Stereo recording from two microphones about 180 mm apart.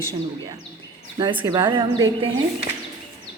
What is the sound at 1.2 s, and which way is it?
Speech, 25° right (ahead or behind).